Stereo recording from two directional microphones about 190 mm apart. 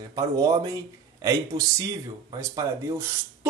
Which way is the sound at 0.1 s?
20° right (ahead or behind).